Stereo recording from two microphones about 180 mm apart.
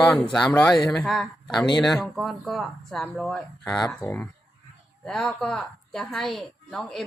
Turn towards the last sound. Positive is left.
turn(degrees=0)  # may be behind; listen again after turning